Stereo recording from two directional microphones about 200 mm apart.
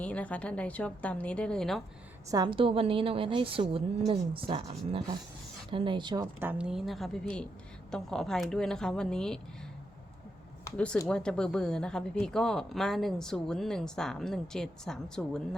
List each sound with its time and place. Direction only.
0.0 s a woman's voice: 5° left (ahead or behind)
2.3 s a woman's voice: 20° right (ahead or behind)
6.4 s speech: 5° right (ahead or behind)
10.6 s speech: 10° left (ahead or behind)